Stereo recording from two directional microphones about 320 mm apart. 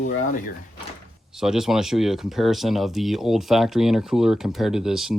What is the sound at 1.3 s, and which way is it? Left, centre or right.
Speech, centre.